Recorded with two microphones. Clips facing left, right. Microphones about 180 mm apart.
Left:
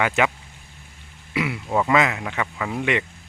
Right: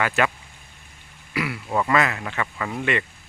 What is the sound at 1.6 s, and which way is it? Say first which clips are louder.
Speech: left 2 dB; 10° left (ahead or behind).